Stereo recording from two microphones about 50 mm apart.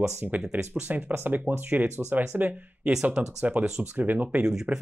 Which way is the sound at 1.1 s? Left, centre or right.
Right.